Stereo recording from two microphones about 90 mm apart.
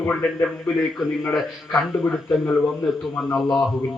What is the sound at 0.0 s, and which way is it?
Speech, 20° left (ahead or behind).